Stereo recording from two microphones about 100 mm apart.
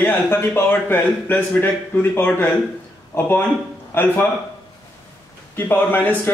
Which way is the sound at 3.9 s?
20° left (ahead or behind).